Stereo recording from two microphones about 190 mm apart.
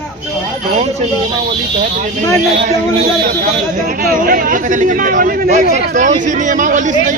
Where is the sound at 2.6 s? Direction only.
45° right (ahead or behind).